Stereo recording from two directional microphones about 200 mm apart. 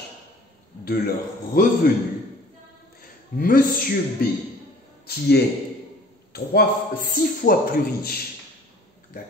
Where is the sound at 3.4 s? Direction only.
45° left (ahead or behind).